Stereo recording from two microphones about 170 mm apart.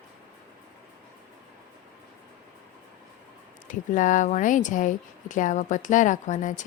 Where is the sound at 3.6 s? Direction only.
50° left (ahead or behind).